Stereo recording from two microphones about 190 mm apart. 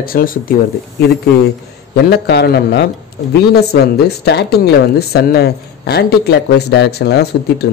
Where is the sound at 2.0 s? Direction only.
60° left (ahead or behind).